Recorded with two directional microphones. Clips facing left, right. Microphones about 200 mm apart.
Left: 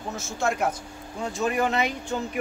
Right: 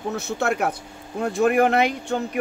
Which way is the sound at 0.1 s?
65° right (ahead or behind).